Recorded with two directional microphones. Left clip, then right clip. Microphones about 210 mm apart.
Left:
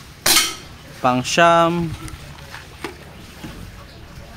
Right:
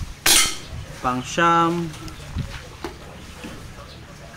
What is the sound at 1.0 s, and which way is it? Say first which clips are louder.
Speech: left 5 dB; 55° left (ahead or behind).